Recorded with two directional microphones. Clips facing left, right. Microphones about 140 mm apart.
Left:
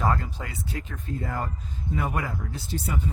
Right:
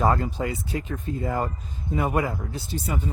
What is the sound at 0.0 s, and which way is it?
Speech, 25° right (ahead or behind).